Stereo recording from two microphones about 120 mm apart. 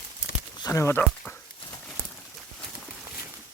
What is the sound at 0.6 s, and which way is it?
Speech, 25° left (ahead or behind).